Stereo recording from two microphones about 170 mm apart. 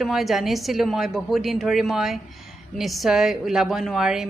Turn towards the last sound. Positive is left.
turn(degrees=-5)  # may be behind; listen again after turning